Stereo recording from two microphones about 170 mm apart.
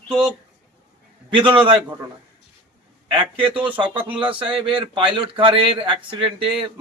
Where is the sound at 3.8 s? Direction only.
30° right (ahead or behind).